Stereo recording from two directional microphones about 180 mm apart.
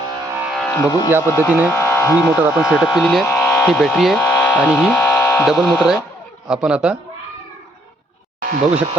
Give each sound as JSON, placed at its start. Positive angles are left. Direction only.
{"t": 0.3, "sound": "music", "side_deg": 0}
{"t": 0.8, "sound": "speech", "side_deg": 20}
{"t": 2.4, "sound": "speech", "side_deg": -5}
{"t": 3.2, "sound": "electric shaver", "side_deg": 10}
{"t": 5.5, "sound": "speech", "side_deg": 0}
{"t": 8.4, "sound": "speech", "side_deg": -50}